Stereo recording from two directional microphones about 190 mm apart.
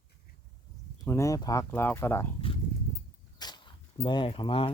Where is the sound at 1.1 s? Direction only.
15° left (ahead or behind).